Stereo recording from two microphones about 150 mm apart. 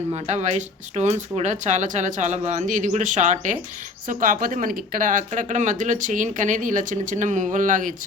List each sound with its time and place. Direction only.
0.1 s speech: 50° right (ahead or behind)